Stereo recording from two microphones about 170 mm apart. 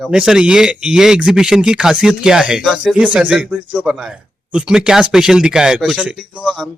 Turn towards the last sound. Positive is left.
turn(degrees=-5)  # may be behind; listen again after turning